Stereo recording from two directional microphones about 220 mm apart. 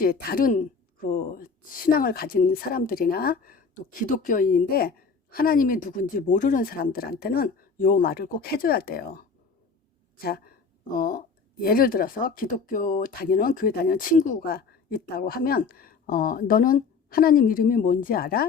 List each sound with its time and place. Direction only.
0.0 s speech: 40° left (ahead or behind)